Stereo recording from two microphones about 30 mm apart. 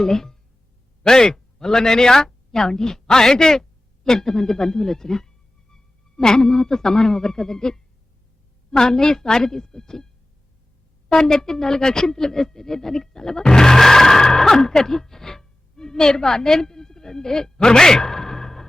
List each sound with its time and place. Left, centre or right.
0.0 s a man's voice: centre
11.1 s speech: centre